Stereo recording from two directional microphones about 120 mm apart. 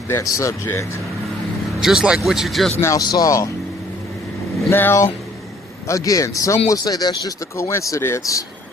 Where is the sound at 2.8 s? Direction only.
30° left (ahead or behind).